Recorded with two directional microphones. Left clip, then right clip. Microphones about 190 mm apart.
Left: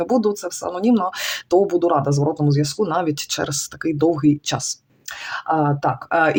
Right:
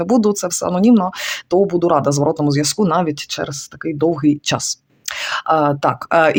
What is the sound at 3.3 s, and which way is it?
Speech, 10° right (ahead or behind).